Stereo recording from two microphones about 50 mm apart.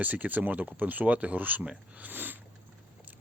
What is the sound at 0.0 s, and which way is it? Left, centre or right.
Speech, right.